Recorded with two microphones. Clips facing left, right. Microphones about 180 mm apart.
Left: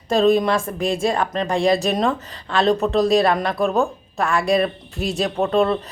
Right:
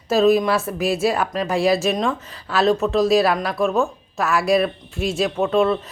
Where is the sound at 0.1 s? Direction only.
5° right (ahead or behind).